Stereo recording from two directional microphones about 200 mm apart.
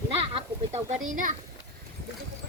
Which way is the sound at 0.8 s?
40° right (ahead or behind).